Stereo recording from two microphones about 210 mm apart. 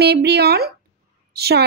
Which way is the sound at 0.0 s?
50° right (ahead or behind).